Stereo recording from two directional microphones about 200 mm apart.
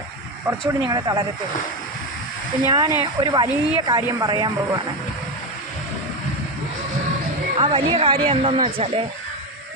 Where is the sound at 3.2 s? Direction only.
20° right (ahead or behind).